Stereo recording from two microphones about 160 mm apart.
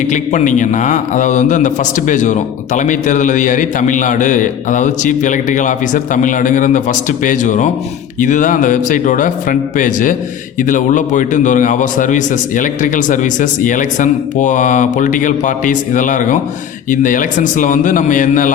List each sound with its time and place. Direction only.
0.0 s a man's voice: 50° left (ahead or behind)